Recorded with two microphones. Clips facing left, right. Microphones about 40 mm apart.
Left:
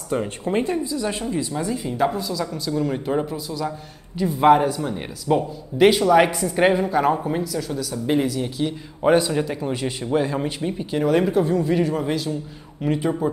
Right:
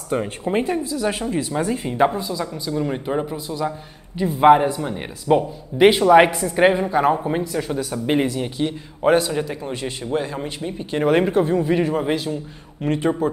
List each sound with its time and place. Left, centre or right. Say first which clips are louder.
0.1 s a woman's voice: right 1 dB; centre
3.4 s a woman's voice: right 2 dB; right
4.2 s a woman's voice: right 2 dB; centre
6.4 s a woman's voice: right 2 dB; centre
7.5 s speech: right 2 dB; right
9.2 s speech: left 1 dB; centre
10.8 s a woman's voice: right 2 dB; centre
12.8 s a woman's voice: right 1 dB; centre